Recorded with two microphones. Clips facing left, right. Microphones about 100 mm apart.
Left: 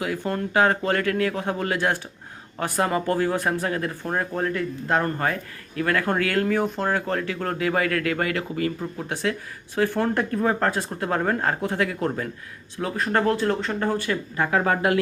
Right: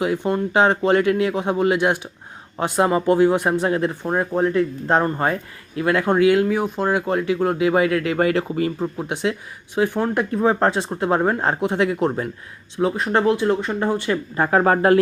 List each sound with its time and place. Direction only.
0.0 s speech: 25° right (ahead or behind)
14.3 s speech: 35° right (ahead or behind)